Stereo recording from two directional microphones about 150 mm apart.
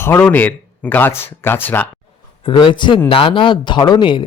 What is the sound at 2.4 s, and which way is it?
A man's voice, 35° left (ahead or behind).